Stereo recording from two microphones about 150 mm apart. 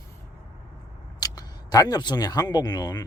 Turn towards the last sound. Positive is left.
turn(degrees=25)  # may be behind; listen again after turning